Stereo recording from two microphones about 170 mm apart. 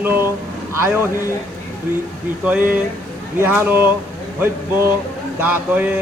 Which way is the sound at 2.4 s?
10° right (ahead or behind).